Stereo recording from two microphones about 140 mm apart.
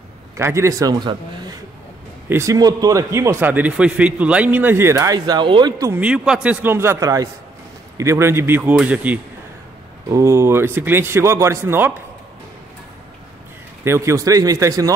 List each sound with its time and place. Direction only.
0.4 s a man's voice: 20° right (ahead or behind)
5.9 s a man's voice: 10° right (ahead or behind)
10.0 s a man's voice: 20° right (ahead or behind)
13.8 s a man's voice: 20° right (ahead or behind)